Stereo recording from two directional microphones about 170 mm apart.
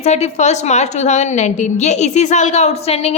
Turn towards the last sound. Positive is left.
turn(degrees=35)  # may be behind; listen again after turning